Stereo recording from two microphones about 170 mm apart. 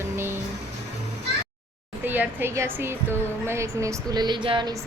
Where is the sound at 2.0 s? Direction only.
10° right (ahead or behind); by 4.7 s 30° right (ahead or behind).